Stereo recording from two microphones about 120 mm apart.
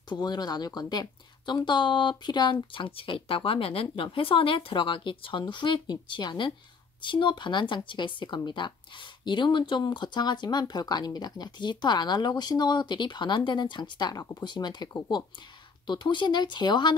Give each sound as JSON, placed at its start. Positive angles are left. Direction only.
{"t": 0.1, "sound": "speech", "side_deg": 35}